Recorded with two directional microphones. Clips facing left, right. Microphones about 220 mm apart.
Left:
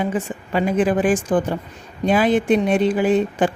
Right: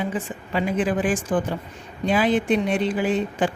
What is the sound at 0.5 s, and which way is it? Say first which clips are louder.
Speech: left 4 dB; 45° left (ahead or behind).